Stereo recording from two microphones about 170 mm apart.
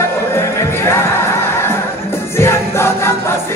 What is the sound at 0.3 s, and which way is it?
Music, 15° left (ahead or behind).